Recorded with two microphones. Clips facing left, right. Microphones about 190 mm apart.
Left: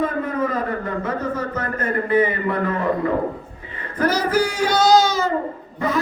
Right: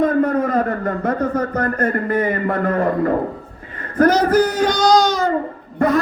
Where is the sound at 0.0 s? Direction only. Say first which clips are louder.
Right 6 dB; 45° right (ahead or behind).